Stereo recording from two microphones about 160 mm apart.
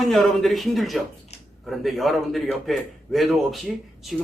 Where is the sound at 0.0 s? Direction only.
Centre (ahead or behind).